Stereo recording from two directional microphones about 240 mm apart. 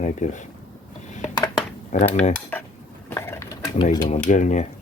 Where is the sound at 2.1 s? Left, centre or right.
Left.